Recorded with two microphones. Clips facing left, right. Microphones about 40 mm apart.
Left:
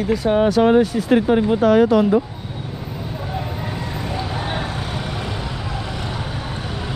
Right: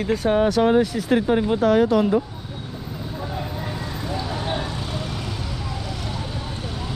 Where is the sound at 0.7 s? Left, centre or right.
Left.